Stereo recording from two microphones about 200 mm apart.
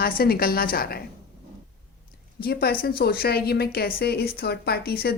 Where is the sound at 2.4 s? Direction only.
50° left (ahead or behind).